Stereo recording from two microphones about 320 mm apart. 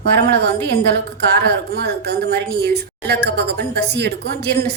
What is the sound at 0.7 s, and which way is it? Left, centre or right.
A woman's voice, right.